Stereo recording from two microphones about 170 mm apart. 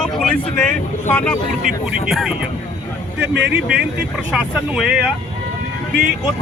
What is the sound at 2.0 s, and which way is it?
Speech, 5° right (ahead or behind).